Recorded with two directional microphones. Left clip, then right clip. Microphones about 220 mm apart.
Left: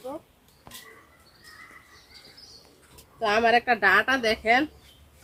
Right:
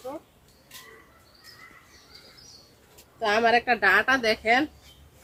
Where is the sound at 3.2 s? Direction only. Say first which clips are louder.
Even; 5° left (ahead or behind).